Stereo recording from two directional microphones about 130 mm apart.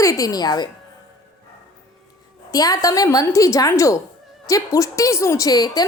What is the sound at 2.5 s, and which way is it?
A woman's voice, 30° left (ahead or behind).